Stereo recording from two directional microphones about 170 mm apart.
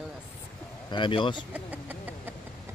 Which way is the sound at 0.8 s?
30° left (ahead or behind).